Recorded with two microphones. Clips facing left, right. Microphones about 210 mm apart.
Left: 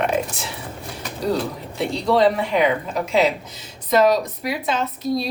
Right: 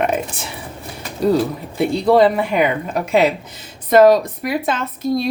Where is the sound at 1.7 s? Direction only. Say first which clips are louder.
Right 5 dB; 55° right (ahead or behind).